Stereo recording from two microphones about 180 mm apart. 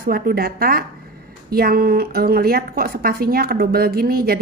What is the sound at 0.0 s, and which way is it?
A woman's voice, 60° right (ahead or behind).